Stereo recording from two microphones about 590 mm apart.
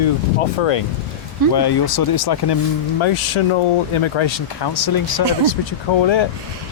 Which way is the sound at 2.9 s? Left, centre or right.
Left.